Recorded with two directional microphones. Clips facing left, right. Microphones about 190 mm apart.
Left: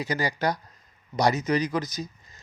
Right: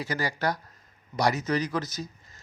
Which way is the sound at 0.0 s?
20° left (ahead or behind).